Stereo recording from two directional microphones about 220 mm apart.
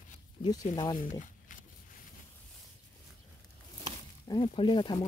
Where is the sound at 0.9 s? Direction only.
35° left (ahead or behind).